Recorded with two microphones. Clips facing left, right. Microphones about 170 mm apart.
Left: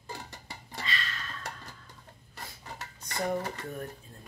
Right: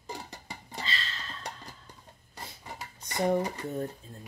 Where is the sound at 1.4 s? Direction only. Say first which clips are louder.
Right 1 dB; 15° right (ahead or behind).